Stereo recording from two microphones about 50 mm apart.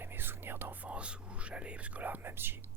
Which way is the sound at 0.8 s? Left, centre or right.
Right.